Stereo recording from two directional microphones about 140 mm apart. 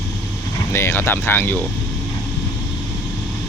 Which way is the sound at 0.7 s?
15° left (ahead or behind).